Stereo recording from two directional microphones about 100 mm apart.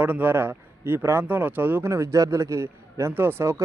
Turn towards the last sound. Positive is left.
turn(degrees=-25)  # may be behind; listen again after turning